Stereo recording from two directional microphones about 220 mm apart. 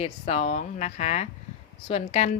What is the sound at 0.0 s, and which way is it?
A woman's voice, 30° left (ahead or behind).